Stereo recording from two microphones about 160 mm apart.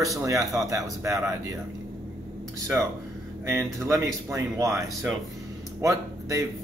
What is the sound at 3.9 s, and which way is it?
Speech, 20° right (ahead or behind).